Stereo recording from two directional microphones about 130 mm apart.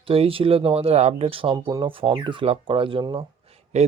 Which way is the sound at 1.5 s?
35° right (ahead or behind).